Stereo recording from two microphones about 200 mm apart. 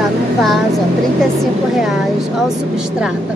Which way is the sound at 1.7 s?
Centre (ahead or behind).